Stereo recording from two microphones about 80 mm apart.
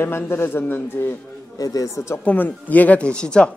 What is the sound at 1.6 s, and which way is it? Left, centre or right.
Speech, left.